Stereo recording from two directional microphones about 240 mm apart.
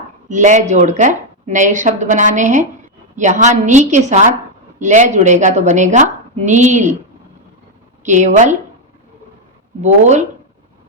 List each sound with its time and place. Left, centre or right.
0.3 s a woman's voice: right
8.0 s speech: right
9.8 s a woman's voice: right